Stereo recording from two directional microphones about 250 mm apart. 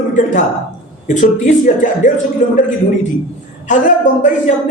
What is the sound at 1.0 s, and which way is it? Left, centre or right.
A man's voice, left.